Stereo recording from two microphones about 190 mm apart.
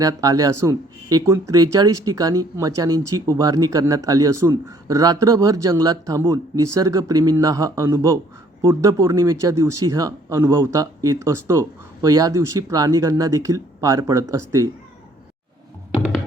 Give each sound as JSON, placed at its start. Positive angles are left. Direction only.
{"t": 0.0, "sound": "speech", "side_deg": -15}